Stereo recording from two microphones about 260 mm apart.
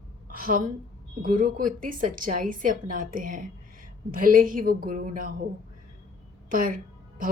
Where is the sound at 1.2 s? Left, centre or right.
Right.